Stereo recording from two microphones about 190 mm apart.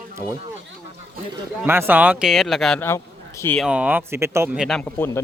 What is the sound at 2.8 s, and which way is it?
Speech, 15° left (ahead or behind).